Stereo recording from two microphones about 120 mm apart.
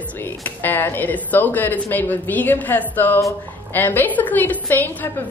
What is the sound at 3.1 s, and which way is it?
Speech, 25° left (ahead or behind).